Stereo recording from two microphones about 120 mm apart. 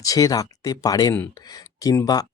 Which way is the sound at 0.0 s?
30° left (ahead or behind).